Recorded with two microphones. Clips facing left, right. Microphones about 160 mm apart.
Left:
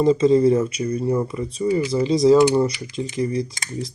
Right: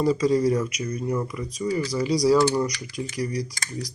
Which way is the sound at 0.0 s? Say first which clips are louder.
Left 5 dB; 25° left (ahead or behind).